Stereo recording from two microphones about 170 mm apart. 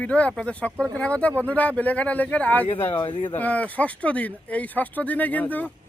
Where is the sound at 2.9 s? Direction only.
30° left (ahead or behind).